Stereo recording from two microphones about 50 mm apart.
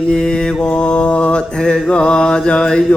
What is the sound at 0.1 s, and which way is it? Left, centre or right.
Mantra, centre.